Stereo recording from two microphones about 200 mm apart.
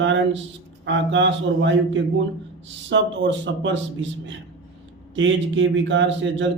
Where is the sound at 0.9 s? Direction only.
65° right (ahead or behind).